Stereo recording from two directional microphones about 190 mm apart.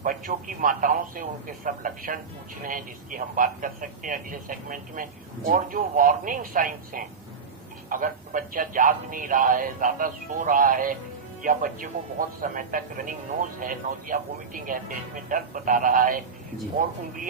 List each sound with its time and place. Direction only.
0.0 s a man's voice: 45° right (ahead or behind)